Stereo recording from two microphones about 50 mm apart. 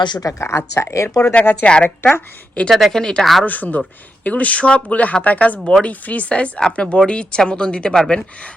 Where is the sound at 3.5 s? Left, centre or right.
Left.